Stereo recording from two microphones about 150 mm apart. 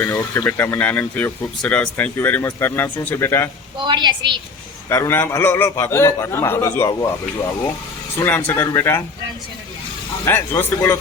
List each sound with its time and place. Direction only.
0.0 s speech: 20° left (ahead or behind)
3.8 s a woman's voice: 30° right (ahead or behind)
4.9 s speech: 15° left (ahead or behind)
8.2 s speech: 15° left (ahead or behind)
10.2 s speech: 15° left (ahead or behind)